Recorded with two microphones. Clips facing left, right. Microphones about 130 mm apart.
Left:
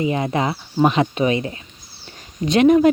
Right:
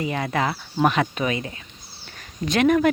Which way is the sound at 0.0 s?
20° left (ahead or behind).